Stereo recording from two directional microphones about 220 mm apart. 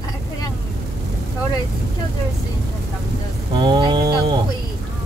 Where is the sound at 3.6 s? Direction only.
20° right (ahead or behind).